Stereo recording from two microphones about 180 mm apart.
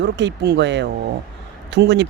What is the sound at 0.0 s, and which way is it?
Speech, 75° right (ahead or behind).